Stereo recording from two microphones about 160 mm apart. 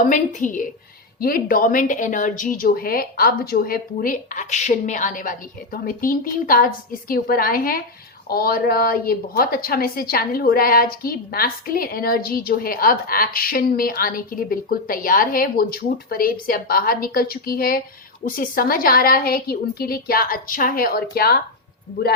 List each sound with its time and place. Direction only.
0.0 s a woman's voice: 55° left (ahead or behind)
1.2 s a woman's voice: 65° left (ahead or behind)